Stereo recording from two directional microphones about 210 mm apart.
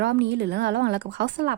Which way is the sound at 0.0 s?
55° right (ahead or behind).